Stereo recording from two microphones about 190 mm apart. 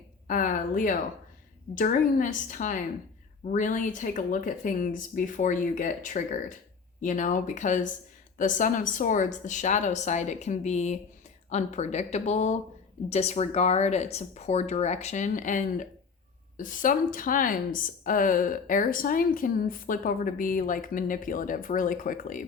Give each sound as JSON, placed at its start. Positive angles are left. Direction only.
{"t": 0.3, "sound": "speech", "side_deg": 45}